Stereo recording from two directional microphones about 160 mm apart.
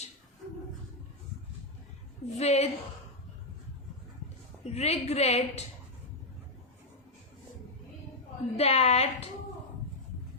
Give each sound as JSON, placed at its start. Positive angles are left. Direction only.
{"t": 2.2, "sound": "a woman's voice", "side_deg": 45}
{"t": 4.6, "sound": "a woman's voice", "side_deg": 45}
{"t": 8.5, "sound": "a woman's voice", "side_deg": 40}